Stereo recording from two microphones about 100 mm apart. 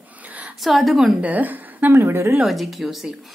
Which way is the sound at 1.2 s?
15° right (ahead or behind).